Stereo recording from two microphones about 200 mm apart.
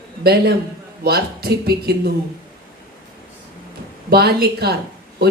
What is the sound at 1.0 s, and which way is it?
A woman's voice, 50° right (ahead or behind).